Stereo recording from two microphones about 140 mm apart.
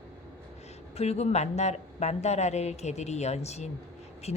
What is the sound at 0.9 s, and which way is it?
A woman's voice, 50° left (ahead or behind).